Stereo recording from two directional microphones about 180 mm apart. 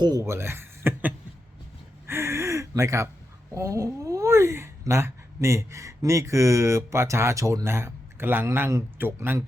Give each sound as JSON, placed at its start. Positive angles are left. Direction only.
{"t": 0.0, "sound": "speech", "side_deg": -20}
{"t": 2.0, "sound": "gasp", "side_deg": -15}
{"t": 3.5, "sound": "speech", "side_deg": -15}